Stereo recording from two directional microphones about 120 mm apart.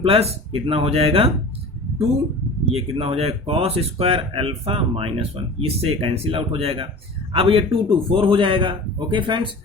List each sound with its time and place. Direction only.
0.0 s speech: 55° right (ahead or behind)
2.6 s speech: 50° right (ahead or behind)